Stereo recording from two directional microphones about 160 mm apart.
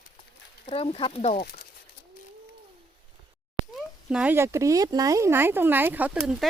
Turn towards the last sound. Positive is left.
turn(degrees=0)  # may be behind; listen again after turning